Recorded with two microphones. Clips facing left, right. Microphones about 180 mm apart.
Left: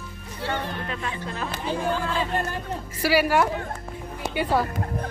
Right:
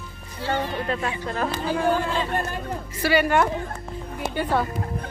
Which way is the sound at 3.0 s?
5° left (ahead or behind).